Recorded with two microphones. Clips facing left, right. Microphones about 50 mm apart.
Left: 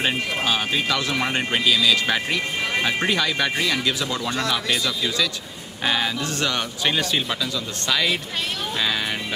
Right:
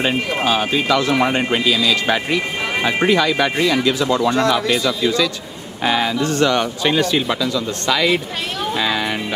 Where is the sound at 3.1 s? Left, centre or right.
Right.